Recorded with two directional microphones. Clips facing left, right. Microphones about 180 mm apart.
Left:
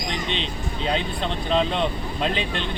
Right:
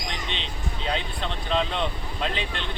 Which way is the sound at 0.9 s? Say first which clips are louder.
Left 4 dB; 20° left (ahead or behind).